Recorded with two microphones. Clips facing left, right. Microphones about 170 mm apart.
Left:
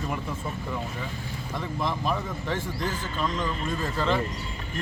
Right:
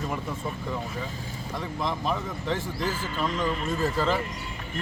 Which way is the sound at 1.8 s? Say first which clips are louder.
Left 1 dB; centre (ahead or behind).